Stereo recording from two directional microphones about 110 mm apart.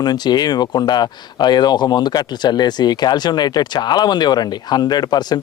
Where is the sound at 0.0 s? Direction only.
40° left (ahead or behind).